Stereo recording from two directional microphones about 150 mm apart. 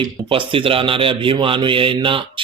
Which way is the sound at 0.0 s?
35° right (ahead or behind).